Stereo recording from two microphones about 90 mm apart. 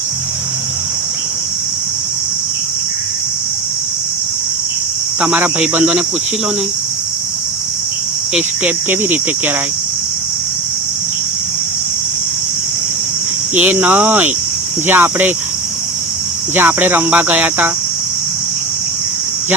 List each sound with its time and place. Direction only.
5.2 s speech: 20° right (ahead or behind)
8.4 s cricket: 20° right (ahead or behind)
13.6 s cricket: 20° right (ahead or behind)
16.6 s cricket: 20° right (ahead or behind)